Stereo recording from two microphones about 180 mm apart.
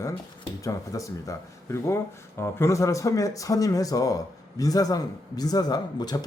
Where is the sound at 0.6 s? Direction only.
20° left (ahead or behind).